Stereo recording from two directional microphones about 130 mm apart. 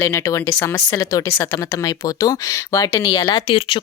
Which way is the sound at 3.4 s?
40° left (ahead or behind).